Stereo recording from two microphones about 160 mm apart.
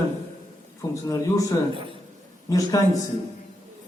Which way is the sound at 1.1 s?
20° left (ahead or behind).